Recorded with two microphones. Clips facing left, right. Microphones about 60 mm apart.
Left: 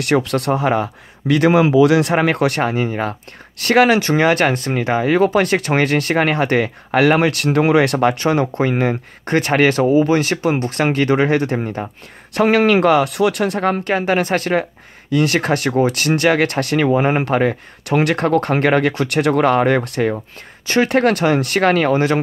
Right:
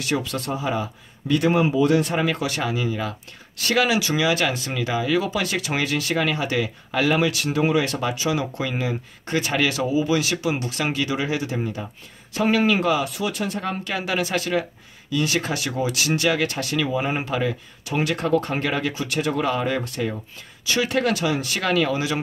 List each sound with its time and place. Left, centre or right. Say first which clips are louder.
0.0 s speech: left 8 dB; left
12.4 s speech: left 7 dB; left
20.6 s speech: left 7 dB; left